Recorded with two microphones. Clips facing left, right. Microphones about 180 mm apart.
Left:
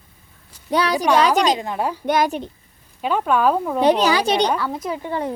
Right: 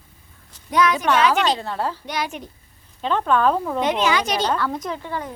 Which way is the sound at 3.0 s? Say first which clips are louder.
Left 1 dB; 10° left (ahead or behind).